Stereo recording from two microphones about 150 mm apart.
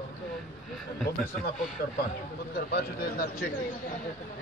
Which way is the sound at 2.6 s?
90° left.